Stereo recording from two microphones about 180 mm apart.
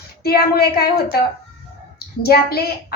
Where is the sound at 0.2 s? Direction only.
60° left (ahead or behind).